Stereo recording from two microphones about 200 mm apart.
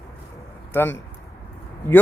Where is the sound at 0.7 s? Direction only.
10° left (ahead or behind).